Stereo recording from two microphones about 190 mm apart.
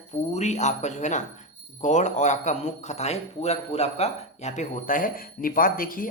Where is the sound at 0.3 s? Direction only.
35° left (ahead or behind).